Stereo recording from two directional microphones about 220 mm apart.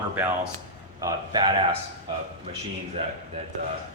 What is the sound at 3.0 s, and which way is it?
Speech, 25° right (ahead or behind).